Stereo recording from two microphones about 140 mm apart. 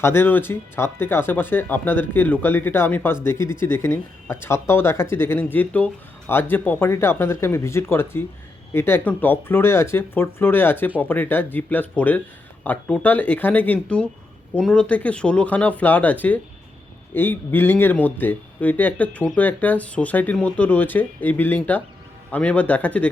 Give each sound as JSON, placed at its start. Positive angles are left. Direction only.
{"t": 0.0, "sound": "speech", "side_deg": 15}